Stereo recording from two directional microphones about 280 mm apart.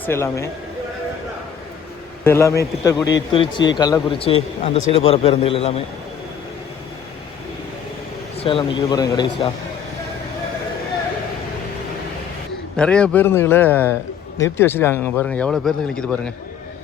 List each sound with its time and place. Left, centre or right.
0.0 s speech: centre
2.2 s a man's voice: centre
8.4 s a man's voice: centre
12.7 s speech: centre